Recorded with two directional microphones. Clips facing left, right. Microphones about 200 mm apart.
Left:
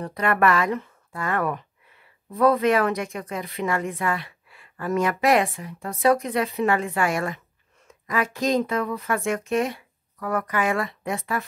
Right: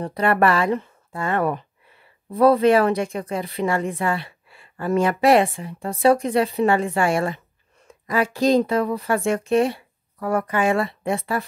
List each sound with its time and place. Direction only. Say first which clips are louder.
0.0 s a woman's voice: right 3 dB; 30° right (ahead or behind)